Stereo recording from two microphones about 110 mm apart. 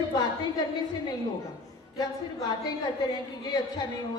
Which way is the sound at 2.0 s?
35° left (ahead or behind).